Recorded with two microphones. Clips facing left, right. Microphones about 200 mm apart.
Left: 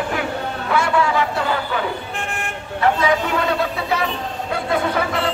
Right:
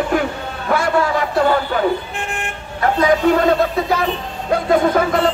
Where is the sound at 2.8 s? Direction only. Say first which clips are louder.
Right 3 dB; 40° right (ahead or behind).